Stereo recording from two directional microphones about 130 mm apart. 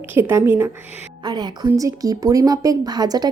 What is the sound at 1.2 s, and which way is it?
A woman's voice, 35° right (ahead or behind).